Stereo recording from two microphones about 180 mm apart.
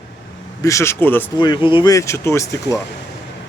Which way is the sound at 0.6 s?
15° left (ahead or behind).